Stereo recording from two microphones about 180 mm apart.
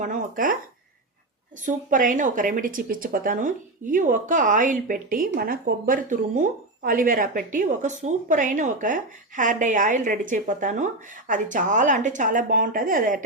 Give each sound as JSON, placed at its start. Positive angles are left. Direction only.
{"t": 0.0, "sound": "a woman's voice", "side_deg": -45}
{"t": 1.6, "sound": "a woman's voice", "side_deg": -45}